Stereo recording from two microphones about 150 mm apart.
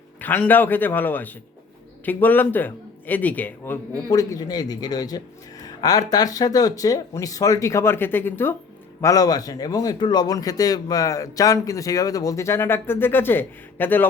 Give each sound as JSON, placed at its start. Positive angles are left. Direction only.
{"t": 0.2, "sound": "a man's voice", "side_deg": 10}
{"t": 4.1, "sound": "speech", "side_deg": 25}